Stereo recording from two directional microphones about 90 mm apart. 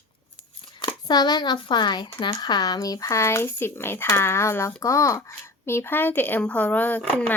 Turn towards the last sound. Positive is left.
turn(degrees=15)  # may be behind; listen again after turning